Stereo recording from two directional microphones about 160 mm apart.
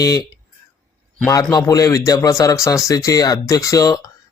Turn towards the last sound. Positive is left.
turn(degrees=20)  # may be behind; listen again after turning